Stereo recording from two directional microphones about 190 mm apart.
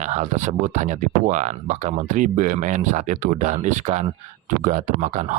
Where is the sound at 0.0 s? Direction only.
40° right (ahead or behind).